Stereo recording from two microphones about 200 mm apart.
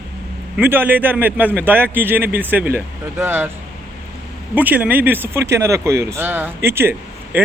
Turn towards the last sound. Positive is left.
turn(degrees=-10)  # may be behind; listen again after turning